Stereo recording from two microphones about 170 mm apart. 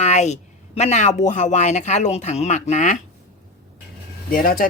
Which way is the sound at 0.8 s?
40° left (ahead or behind).